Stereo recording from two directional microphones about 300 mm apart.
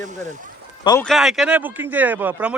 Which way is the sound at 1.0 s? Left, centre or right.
Centre.